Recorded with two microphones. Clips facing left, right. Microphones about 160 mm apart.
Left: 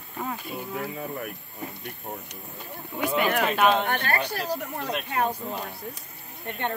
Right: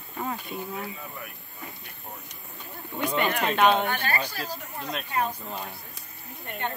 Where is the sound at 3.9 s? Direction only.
55° left (ahead or behind).